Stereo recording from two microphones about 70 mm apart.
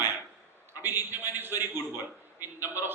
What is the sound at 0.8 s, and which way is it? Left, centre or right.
A man's voice, right.